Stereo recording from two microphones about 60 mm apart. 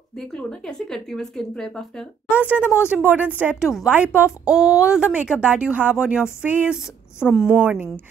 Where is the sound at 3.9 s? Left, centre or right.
Right.